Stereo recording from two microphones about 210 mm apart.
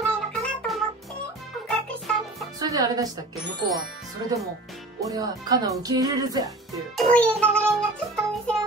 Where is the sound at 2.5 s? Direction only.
15° right (ahead or behind).